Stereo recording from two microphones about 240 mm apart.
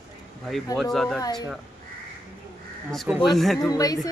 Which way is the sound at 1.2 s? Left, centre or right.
Centre.